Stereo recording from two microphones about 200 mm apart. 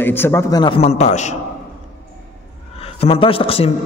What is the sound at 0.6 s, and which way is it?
Speech, 30° left (ahead or behind).